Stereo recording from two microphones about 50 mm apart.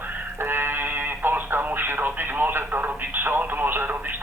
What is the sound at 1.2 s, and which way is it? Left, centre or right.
Radio, right.